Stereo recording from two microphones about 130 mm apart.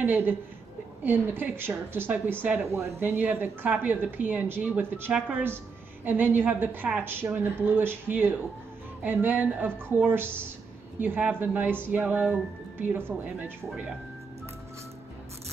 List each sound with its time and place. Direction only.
0.0 s speech: 15° right (ahead or behind)